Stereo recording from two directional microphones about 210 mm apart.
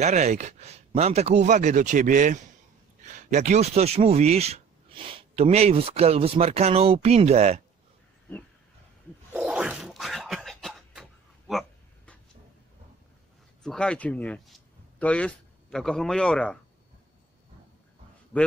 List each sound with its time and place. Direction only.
0.0 s speech: 35° right (ahead or behind)
9.3 s a sound: 5° right (ahead or behind)
13.6 s speech: 5° left (ahead or behind)